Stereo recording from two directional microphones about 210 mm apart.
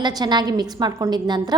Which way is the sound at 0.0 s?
20° right (ahead or behind).